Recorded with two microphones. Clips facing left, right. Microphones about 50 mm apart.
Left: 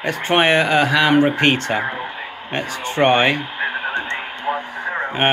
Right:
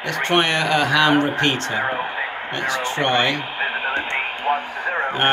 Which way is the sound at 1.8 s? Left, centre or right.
Centre.